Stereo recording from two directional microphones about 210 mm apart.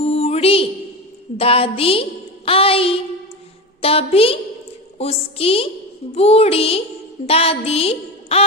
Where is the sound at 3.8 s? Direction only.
25° left (ahead or behind).